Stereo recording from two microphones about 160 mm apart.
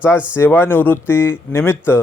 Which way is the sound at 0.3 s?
15° left (ahead or behind).